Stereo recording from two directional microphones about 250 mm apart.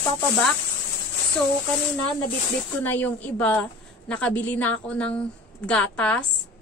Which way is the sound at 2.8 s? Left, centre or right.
Centre.